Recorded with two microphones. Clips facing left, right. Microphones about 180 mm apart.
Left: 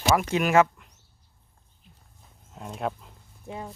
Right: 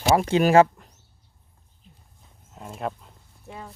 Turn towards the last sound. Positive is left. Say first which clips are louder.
# left 3 dB
turn(degrees=20)  # may be behind; listen again after turning